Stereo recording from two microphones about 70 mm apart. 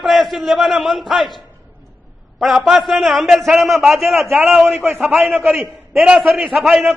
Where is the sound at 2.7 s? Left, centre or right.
Centre.